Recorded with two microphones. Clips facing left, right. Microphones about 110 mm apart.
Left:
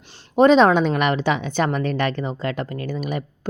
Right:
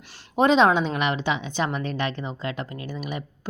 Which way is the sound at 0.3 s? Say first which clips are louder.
Left 5 dB; 40° left (ahead or behind).